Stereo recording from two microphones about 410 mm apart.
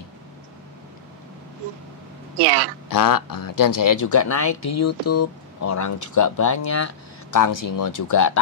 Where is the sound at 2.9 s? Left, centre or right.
Left.